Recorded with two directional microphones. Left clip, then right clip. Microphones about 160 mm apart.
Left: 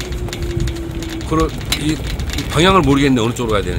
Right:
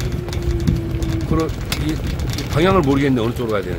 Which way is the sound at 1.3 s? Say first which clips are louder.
Left 4 dB; 25° left (ahead or behind).